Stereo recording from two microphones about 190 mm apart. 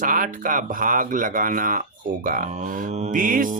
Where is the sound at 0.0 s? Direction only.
45° right (ahead or behind).